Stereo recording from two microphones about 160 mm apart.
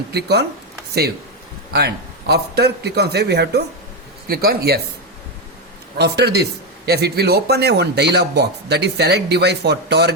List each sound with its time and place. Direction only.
0.1 s a man's voice: 90° right
1.7 s a man's voice: 90° right
4.3 s speech: 70° right (ahead or behind)
6.0 s a man's voice: 90° right